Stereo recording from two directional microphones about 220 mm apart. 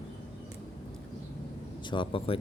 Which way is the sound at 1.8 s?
20° left (ahead or behind).